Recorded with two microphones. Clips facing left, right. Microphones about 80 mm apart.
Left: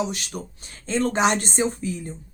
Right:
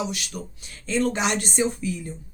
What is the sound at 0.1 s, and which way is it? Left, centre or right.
Speech, left.